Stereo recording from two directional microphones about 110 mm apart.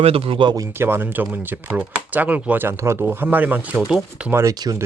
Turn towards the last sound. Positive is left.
turn(degrees=-35)  # may be behind; listen again after turning